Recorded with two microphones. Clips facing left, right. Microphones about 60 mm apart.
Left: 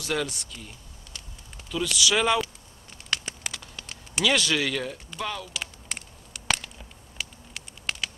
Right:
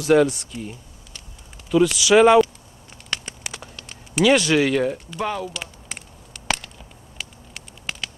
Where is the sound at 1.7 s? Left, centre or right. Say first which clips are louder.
Right 10 dB; right.